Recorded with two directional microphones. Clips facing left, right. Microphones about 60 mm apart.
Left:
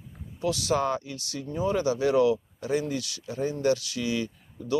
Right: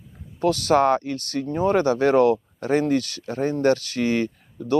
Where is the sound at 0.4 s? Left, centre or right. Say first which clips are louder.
Right 8 dB; right.